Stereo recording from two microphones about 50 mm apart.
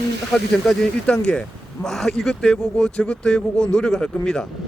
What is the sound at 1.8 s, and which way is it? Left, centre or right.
Speech, centre.